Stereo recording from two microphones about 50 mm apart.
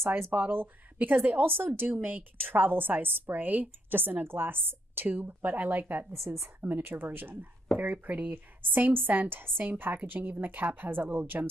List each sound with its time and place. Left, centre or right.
0.3 s speech: right
0.9 s a woman's voice: right
1.4 s a woman's voice: right
6.1 s a woman's voice: right
6.6 s a woman's voice: right